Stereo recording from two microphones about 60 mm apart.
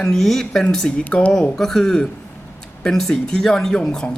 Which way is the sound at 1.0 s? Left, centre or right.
Left.